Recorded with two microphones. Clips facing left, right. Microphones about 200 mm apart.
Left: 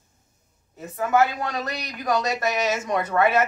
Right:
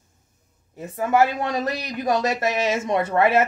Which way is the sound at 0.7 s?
30° right (ahead or behind).